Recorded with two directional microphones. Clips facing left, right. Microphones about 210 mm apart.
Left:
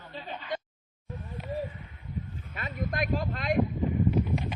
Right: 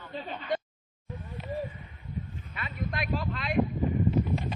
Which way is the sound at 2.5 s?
45° left (ahead or behind).